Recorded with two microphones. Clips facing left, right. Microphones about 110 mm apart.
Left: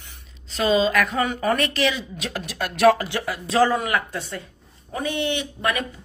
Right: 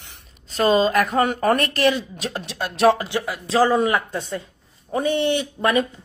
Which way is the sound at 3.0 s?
15° right (ahead or behind).